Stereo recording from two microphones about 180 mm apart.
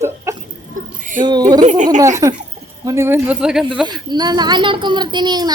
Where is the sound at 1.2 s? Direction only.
25° right (ahead or behind).